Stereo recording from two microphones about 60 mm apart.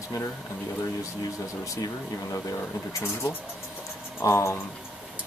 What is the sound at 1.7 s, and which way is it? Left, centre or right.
Speech, left.